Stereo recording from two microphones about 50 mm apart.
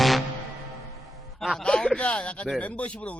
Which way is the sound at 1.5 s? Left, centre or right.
Centre.